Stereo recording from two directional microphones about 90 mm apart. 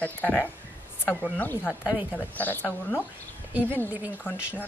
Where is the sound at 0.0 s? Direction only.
20° left (ahead or behind).